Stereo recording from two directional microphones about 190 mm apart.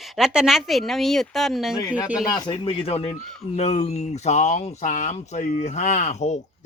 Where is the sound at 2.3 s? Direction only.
25° left (ahead or behind).